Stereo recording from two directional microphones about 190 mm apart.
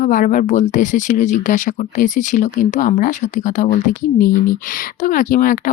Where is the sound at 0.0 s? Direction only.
45° left (ahead or behind).